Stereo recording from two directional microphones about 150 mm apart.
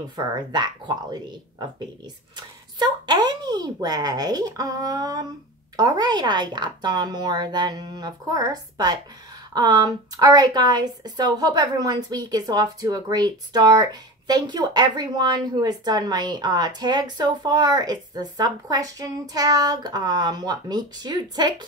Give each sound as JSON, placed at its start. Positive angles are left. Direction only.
{"t": 0.1, "sound": "a woman's voice", "side_deg": -25}
{"t": 2.3, "sound": "a woman's voice", "side_deg": -25}